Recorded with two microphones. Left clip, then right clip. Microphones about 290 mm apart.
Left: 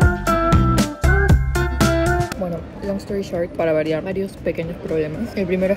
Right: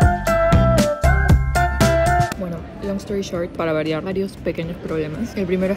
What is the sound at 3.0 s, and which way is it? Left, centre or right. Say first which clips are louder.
Speech: left 1 dB; centre.